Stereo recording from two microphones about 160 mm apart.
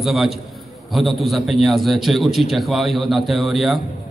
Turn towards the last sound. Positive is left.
turn(degrees=0)  # may be behind; listen again after turning